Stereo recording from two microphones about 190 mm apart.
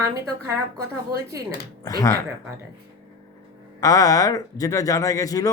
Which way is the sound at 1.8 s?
15° left (ahead or behind).